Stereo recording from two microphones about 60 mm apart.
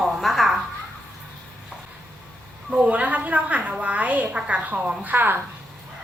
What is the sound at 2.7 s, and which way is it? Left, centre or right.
A woman's voice, right.